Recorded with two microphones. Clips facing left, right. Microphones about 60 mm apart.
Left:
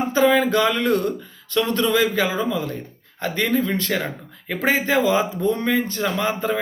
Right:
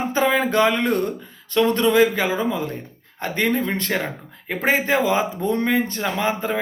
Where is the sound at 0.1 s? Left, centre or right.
Right.